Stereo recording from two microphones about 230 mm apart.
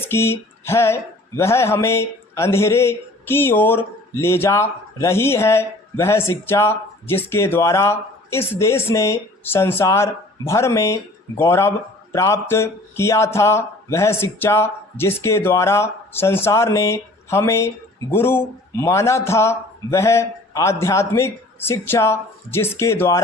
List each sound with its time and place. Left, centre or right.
0.0 s speech: centre